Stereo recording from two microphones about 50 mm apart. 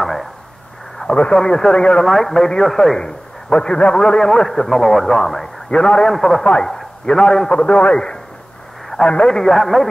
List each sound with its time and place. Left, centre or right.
0.0 s a sound: centre
1.0 s a man's voice: left
9.4 s speech: centre